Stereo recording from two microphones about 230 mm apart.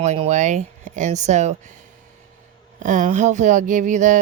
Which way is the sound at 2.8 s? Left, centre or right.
Right.